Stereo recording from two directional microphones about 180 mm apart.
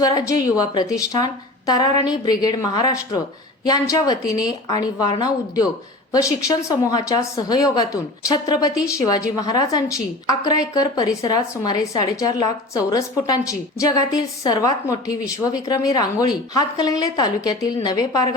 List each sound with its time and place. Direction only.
0.0 s a woman's voice: 20° left (ahead or behind)